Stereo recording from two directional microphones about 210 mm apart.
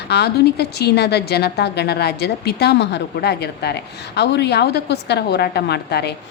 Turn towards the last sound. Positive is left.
turn(degrees=50)  # may be behind; listen again after turning